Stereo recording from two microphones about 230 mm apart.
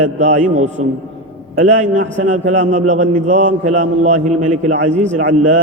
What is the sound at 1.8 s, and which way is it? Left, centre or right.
A man's voice, right.